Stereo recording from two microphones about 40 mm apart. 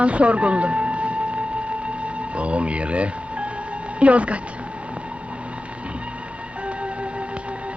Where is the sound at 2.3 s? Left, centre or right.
Right.